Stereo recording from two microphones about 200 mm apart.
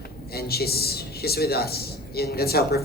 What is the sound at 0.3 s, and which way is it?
A man's voice, 50° left (ahead or behind).